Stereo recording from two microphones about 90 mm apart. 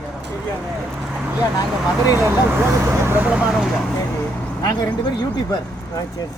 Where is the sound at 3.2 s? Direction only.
10° right (ahead or behind).